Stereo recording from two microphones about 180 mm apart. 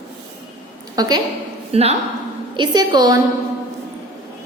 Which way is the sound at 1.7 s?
35° right (ahead or behind).